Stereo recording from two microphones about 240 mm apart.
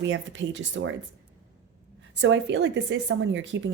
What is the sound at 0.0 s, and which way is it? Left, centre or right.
Speech, right.